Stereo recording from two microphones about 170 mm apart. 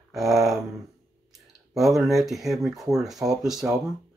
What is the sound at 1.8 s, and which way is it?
Speech, centre (ahead or behind).